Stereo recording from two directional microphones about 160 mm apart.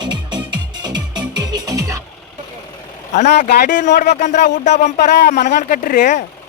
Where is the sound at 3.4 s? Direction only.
90° left.